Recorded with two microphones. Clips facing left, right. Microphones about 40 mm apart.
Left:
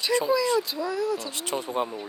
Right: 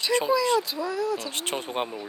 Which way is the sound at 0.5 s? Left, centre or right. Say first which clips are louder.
Even; centre.